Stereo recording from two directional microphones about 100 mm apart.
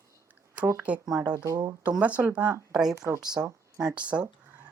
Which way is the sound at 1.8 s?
15° right (ahead or behind).